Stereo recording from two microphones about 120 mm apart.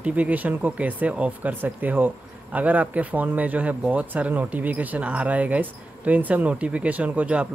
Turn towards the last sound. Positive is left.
turn(degrees=-10)  # may be behind; listen again after turning